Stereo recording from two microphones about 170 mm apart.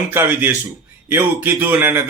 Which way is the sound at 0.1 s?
10° right (ahead or behind).